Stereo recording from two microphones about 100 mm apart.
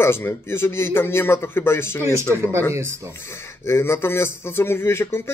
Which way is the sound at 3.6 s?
25° left (ahead or behind).